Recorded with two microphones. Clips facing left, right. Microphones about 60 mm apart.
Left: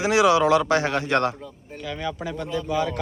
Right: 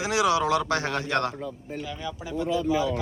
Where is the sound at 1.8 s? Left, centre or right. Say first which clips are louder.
Left 7 dB; left.